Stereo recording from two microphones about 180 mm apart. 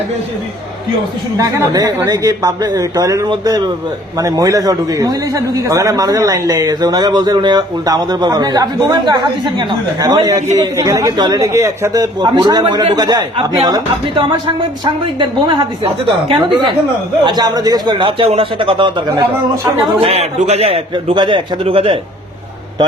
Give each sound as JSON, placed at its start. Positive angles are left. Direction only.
{"t": 1.4, "sound": "a man's voice", "side_deg": -20}